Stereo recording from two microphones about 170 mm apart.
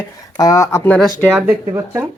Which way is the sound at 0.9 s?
5° left (ahead or behind).